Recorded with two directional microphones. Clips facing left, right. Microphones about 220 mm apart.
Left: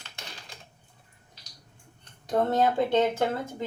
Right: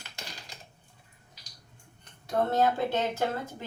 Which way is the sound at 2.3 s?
15° left (ahead or behind).